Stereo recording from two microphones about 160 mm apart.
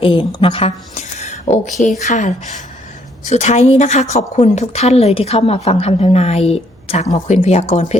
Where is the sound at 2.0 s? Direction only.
50° left (ahead or behind).